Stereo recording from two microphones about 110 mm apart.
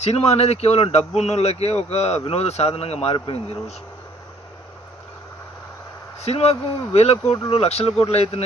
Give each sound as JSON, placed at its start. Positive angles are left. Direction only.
{"t": 0.0, "sound": "speech", "side_deg": 75}
{"t": 6.1, "sound": "speech", "side_deg": 70}